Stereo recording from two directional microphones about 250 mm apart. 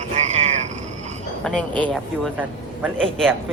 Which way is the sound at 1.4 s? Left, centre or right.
Centre.